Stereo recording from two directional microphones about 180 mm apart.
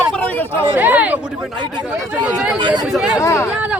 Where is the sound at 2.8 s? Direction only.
Centre (ahead or behind).